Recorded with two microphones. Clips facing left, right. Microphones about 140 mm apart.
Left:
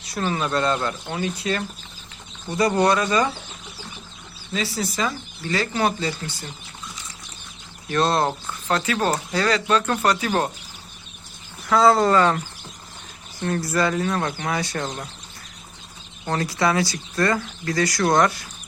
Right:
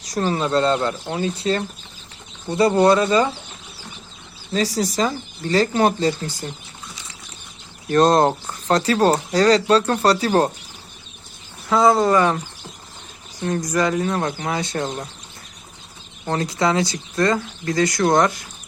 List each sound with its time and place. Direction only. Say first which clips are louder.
0.0 s speech: right 3 dB; 40° right (ahead or behind)
4.5 s speech: right 5 dB; 40° right (ahead or behind)
7.9 s speech: right 6 dB; 40° right (ahead or behind)
11.7 s speech: right 1 dB; 20° right (ahead or behind)
13.4 s speech: right 2 dB; 15° right (ahead or behind)
16.2 s speech: right 2 dB; 25° right (ahead or behind)